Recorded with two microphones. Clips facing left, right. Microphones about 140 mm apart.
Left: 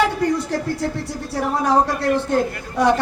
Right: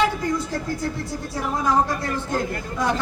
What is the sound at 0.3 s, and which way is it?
A man's voice, 70° left (ahead or behind).